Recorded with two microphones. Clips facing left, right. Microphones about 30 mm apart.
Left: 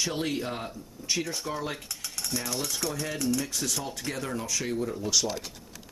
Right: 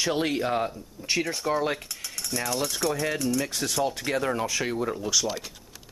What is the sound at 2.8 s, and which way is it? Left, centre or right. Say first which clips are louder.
Speech: right 5 dB; centre.